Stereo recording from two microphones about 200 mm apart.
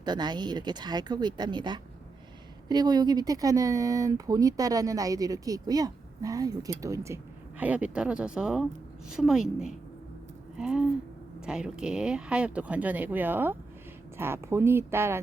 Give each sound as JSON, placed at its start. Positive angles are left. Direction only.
{"t": 0.0, "sound": "speech", "side_deg": -20}